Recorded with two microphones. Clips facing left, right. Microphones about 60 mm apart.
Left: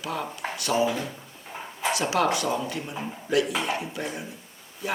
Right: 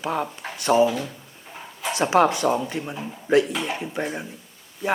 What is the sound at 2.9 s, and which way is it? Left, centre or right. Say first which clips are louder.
Speech: right 1 dB; centre.